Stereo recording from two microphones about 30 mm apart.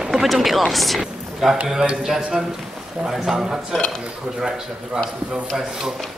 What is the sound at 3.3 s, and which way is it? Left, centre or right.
Speech, centre.